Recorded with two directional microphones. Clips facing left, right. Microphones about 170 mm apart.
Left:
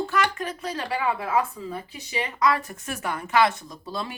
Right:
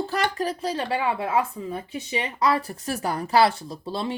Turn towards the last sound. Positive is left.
turn(degrees=-25)  # may be behind; listen again after turning